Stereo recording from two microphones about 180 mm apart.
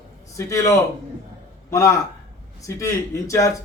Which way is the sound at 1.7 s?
15° left (ahead or behind).